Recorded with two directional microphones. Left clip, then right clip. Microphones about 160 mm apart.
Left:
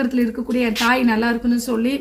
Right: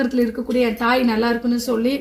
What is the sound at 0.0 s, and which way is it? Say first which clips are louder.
Speech: right 1 dB; 20° left (ahead or behind).